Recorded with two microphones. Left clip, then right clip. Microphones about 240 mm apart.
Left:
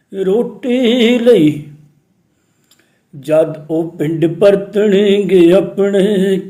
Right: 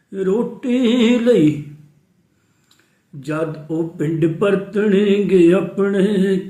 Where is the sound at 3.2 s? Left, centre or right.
Centre.